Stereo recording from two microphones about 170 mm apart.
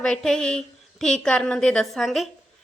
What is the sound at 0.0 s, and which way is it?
A woman's voice, 5° left (ahead or behind).